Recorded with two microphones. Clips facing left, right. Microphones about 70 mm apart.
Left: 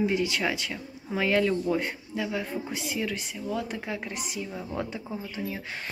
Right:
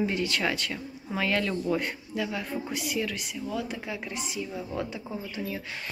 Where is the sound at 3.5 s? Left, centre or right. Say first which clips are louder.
Left 1 dB; left.